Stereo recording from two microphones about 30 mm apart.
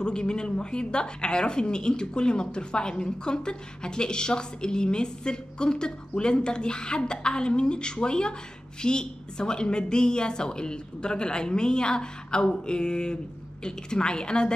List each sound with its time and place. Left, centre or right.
0.0 s a woman's voice: left